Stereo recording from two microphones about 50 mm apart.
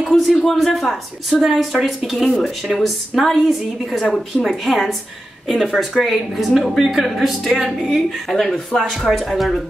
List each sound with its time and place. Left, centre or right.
0.0 s a sound: centre
0.4 s speech: centre
8.4 s speech: centre